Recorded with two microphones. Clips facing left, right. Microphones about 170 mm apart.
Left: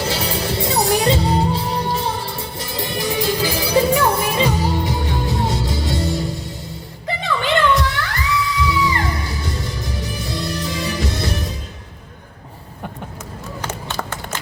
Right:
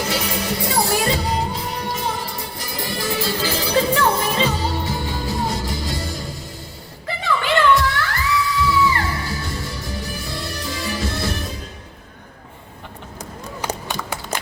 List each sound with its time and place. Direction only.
0.1 s music: 25° left (ahead or behind)
7.7 s music: 20° left (ahead or behind)
14.0 s a sound: 60° left (ahead or behind)